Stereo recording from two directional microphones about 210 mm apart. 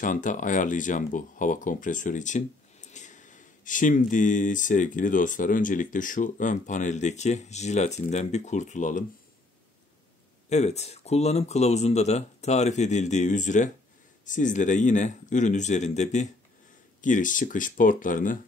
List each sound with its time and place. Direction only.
0.0 s speech: 40° left (ahead or behind)
10.5 s speech: 30° left (ahead or behind)